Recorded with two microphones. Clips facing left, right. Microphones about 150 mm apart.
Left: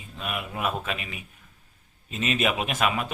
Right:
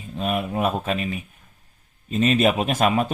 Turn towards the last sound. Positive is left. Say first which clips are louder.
# right 6 dB
turn(degrees=-35)  # may be behind; listen again after turning